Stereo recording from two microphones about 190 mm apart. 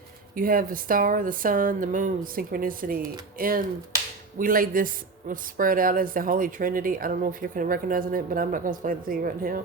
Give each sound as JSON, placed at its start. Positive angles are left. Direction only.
{"t": 0.3, "sound": "speech", "side_deg": -50}